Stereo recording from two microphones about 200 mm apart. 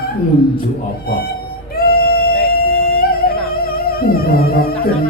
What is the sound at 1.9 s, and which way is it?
Music, 50° left (ahead or behind).